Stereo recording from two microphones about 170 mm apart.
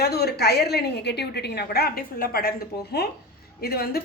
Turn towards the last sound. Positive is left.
turn(degrees=65)  # may be behind; listen again after turning